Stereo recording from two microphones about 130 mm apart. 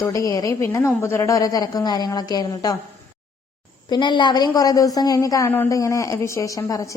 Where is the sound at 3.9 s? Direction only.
35° left (ahead or behind).